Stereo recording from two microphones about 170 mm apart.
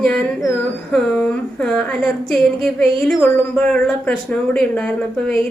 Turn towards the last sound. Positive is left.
turn(degrees=5)  # may be behind; listen again after turning